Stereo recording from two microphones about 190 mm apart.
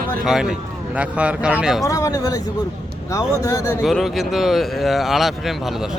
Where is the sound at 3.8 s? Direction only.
Centre (ahead or behind).